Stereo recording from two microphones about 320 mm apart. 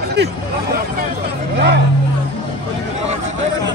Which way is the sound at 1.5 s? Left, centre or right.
Right.